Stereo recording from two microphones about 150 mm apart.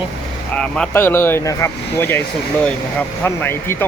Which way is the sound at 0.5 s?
5° left (ahead or behind).